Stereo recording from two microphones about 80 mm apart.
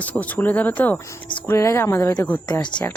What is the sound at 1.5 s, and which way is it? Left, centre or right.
Speech, left.